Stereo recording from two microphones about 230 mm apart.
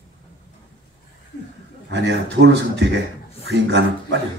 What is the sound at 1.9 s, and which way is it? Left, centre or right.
A man's voice, right.